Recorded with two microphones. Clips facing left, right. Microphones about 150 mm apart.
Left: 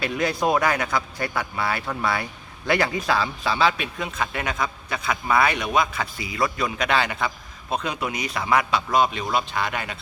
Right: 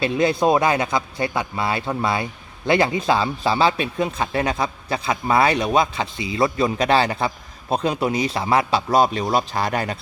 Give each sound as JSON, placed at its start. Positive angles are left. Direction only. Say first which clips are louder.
{"t": 0.0, "sound": "a man's voice", "louder": "right 5 dB", "side_deg": -25}